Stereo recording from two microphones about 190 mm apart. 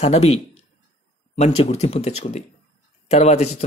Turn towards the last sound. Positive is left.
turn(degrees=35)  # may be behind; listen again after turning